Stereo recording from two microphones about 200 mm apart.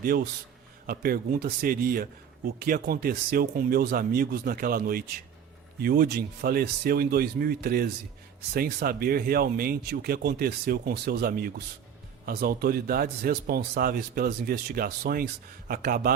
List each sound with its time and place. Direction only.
0.9 s speech: 45° right (ahead or behind)